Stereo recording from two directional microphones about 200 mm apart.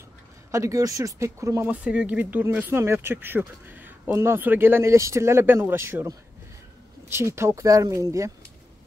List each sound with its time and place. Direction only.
0.5 s speech: 15° right (ahead or behind)